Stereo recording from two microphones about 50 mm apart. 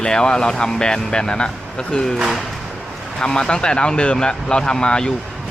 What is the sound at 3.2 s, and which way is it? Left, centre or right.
Speech, centre.